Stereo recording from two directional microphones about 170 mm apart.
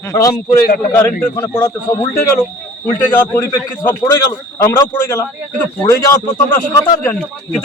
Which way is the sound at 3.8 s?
15° left (ahead or behind).